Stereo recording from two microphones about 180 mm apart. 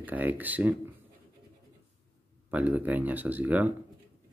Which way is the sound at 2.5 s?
10° right (ahead or behind).